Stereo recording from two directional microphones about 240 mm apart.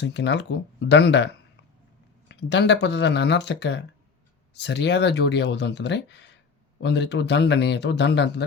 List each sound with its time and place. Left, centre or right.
0.0 s speech: left